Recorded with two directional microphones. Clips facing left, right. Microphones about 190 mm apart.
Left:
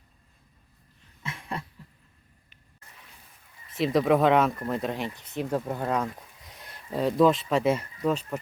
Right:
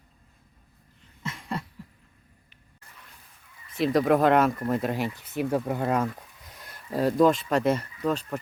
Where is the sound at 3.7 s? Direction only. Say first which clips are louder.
Right 1 dB; centre (ahead or behind).